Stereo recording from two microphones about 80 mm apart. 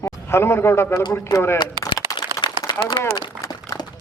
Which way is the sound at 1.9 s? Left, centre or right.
Left.